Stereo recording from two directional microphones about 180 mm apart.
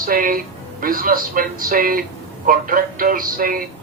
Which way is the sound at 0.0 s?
50° right (ahead or behind).